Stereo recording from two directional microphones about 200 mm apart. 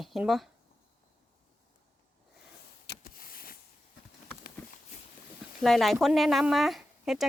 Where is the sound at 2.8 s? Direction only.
50° left (ahead or behind).